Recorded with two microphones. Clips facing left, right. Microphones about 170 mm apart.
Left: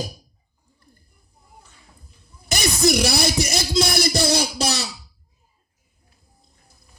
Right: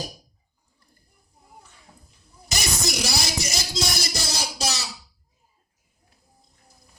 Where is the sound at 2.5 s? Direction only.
60° left (ahead or behind).